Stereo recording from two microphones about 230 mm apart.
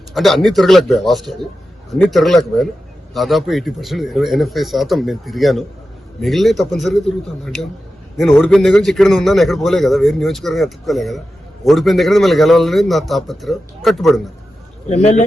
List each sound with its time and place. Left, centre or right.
0.1 s a man's voice: centre
14.8 s speech: left